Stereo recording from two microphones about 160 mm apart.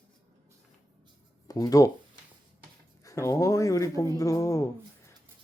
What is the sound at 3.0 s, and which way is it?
Speech, 20° left (ahead or behind).